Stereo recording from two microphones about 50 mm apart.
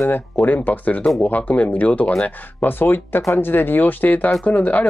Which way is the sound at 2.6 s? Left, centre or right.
Left.